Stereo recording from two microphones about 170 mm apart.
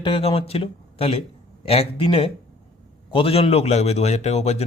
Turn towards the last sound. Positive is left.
turn(degrees=40)  # may be behind; listen again after turning